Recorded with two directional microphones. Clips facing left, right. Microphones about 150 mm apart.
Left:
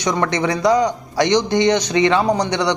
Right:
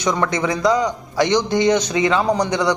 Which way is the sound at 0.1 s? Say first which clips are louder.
Left 1 dB; 20° left (ahead or behind).